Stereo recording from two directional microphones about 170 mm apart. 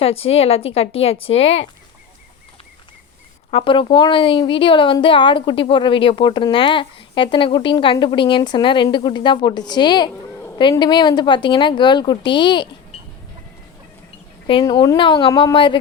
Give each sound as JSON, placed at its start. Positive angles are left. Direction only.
{"t": 0.0, "sound": "a woman's voice", "side_deg": 35}
{"t": 3.5, "sound": "a woman's voice", "side_deg": 30}
{"t": 14.6, "sound": "a woman's voice", "side_deg": 20}